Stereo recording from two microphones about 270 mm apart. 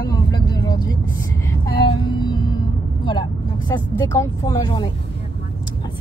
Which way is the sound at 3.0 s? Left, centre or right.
Centre.